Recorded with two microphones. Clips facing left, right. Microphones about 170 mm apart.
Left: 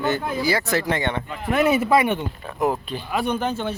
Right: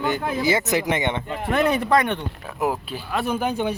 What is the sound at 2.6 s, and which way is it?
Speech, 5° right (ahead or behind).